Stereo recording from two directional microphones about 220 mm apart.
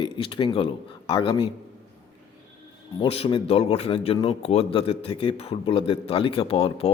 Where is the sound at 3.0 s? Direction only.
25° left (ahead or behind).